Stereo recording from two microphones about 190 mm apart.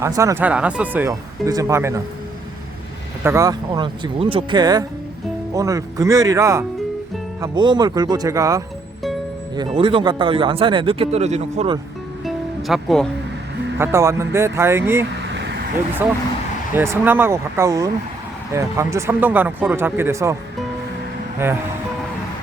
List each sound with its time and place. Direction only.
0.0 s speech: 15° right (ahead or behind)
3.2 s speech: 15° right (ahead or behind); by 11.7 s 35° right (ahead or behind)
12.2 s music: centre (ahead or behind)
13.7 s speech: 15° right (ahead or behind)
21.3 s speech: 10° right (ahead or behind)